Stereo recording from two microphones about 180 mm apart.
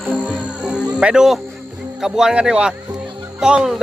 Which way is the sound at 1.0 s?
5° right (ahead or behind).